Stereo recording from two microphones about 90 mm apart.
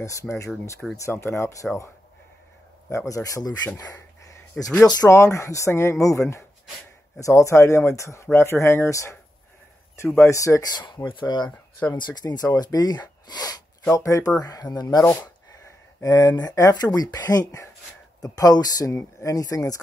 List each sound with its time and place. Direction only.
0.0 s speech: 35° left (ahead or behind)
2.9 s speech: 35° left (ahead or behind)
3.7 s a sound: 35° left (ahead or behind)
5.1 s speech: 35° left (ahead or behind)
10.2 s speech: 35° left (ahead or behind)
10.7 s speech: 55° left (ahead or behind); by 19.8 s 40° left (ahead or behind)